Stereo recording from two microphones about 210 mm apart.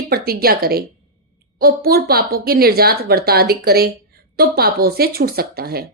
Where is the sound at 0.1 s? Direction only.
45° right (ahead or behind).